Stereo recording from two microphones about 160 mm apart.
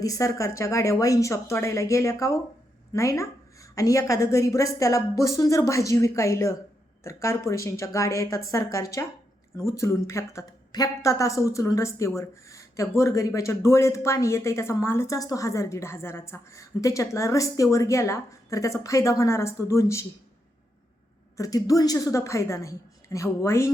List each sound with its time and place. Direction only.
0.0 s a woman's voice: 20° left (ahead or behind)
21.3 s a woman's voice: 20° left (ahead or behind)